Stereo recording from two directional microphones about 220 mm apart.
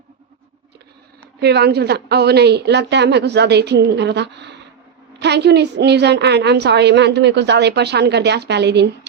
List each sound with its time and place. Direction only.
1.4 s a woman's voice: 50° right (ahead or behind)